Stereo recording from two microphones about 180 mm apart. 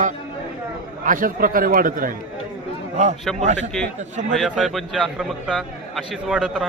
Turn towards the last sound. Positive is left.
turn(degrees=-5)  # may be behind; listen again after turning